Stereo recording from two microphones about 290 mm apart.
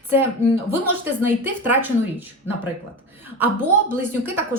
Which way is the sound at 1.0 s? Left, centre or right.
Centre.